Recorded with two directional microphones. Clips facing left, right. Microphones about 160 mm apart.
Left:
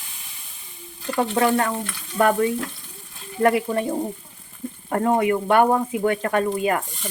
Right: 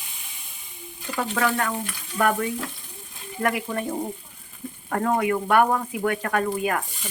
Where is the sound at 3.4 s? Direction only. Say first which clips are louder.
Left 7 dB; 30° left (ahead or behind).